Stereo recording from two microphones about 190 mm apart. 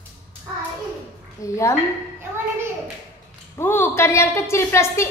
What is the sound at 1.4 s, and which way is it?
Speech, 15° left (ahead or behind).